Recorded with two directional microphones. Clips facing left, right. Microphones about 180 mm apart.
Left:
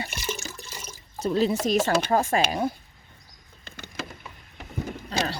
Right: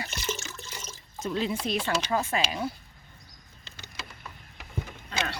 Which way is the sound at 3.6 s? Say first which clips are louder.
Left 8 dB; 50° left (ahead or behind).